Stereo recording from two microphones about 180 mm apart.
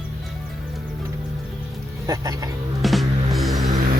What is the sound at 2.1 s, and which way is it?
Speech, 20° right (ahead or behind).